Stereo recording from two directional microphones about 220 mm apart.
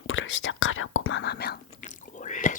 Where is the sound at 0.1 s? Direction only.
60° left (ahead or behind).